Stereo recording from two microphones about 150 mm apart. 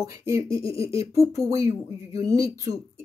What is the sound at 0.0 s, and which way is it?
Speech, 20° right (ahead or behind).